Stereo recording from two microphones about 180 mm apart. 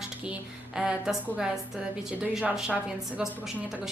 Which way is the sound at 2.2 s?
5° right (ahead or behind).